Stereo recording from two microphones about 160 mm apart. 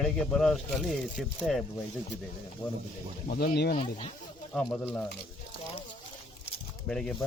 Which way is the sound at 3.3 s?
75° left (ahead or behind).